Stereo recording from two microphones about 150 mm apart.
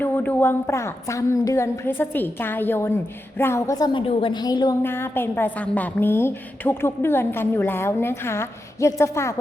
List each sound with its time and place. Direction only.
0.0 s a woman's voice: 10° left (ahead or behind)
4.8 s a woman's voice: 15° left (ahead or behind)